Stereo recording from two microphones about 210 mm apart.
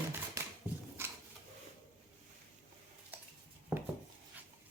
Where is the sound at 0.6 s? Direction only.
10° right (ahead or behind).